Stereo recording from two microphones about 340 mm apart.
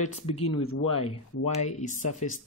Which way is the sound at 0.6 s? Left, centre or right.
Left.